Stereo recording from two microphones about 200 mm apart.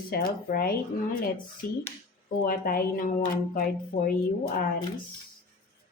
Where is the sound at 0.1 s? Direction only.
50° left (ahead or behind).